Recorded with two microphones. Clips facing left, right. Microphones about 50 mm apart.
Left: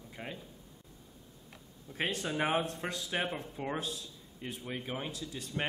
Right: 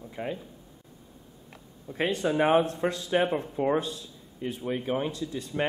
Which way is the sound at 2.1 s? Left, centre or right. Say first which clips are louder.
Right 10 dB; centre.